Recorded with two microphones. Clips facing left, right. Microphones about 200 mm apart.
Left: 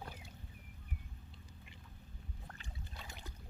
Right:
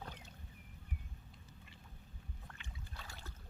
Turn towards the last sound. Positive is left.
turn(degrees=15)  # may be behind; listen again after turning